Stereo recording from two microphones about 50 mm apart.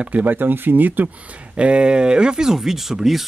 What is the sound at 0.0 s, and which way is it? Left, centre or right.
Speech, right.